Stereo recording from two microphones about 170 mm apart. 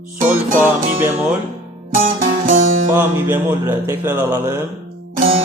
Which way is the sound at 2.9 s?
10° right (ahead or behind).